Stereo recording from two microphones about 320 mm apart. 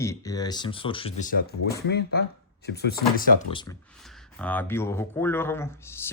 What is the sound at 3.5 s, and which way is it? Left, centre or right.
Speech, centre.